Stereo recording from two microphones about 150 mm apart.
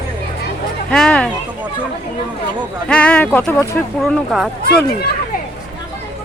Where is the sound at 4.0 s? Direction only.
Centre (ahead or behind).